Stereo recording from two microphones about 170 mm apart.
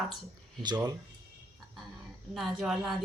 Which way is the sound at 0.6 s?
25° right (ahead or behind).